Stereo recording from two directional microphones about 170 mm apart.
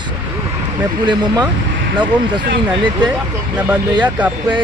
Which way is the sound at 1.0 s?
25° right (ahead or behind).